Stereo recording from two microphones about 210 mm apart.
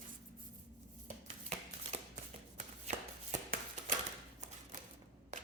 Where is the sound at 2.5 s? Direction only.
35° right (ahead or behind).